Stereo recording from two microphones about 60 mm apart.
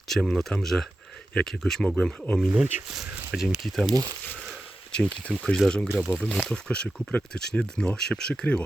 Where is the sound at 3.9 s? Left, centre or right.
Right.